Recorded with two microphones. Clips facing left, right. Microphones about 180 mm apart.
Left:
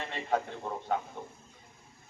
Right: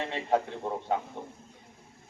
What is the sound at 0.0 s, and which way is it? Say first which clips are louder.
Speech: right 4 dB; 30° right (ahead or behind).